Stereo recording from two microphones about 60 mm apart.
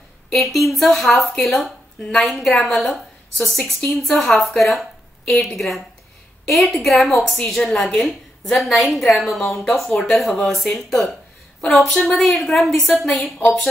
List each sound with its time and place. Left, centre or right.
0.3 s a woman's voice: centre
13.2 s speech: left